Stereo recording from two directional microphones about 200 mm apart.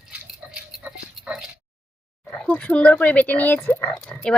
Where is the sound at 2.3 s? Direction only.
5° left (ahead or behind).